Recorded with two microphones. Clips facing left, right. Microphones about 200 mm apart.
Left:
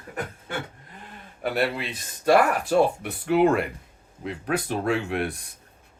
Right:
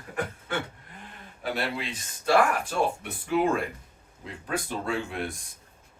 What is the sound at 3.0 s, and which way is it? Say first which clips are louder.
Speech: left 5 dB; 70° left (ahead or behind).